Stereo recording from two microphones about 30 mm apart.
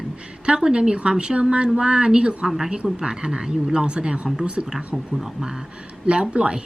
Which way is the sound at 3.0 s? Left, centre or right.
Right.